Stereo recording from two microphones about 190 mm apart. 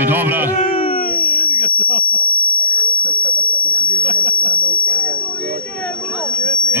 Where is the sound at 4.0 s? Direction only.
40° left (ahead or behind).